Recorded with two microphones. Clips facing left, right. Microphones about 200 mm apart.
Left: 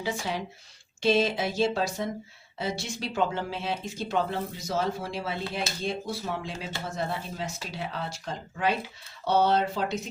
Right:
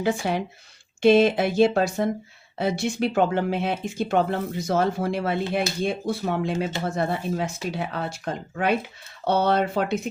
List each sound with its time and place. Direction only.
0.0 s speech: 55° right (ahead or behind)